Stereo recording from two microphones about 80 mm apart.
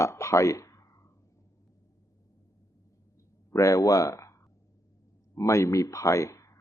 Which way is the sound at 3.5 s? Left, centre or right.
Left.